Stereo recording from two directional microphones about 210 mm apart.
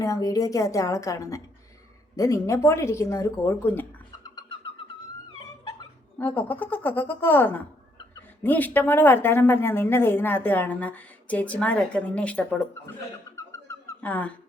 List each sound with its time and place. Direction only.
0.0 s a woman's voice: 15° left (ahead or behind)
6.1 s a woman's voice: 10° left (ahead or behind)
13.3 s a sound: 15° left (ahead or behind)